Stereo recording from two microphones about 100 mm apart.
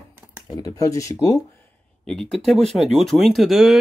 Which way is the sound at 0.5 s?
35° left (ahead or behind).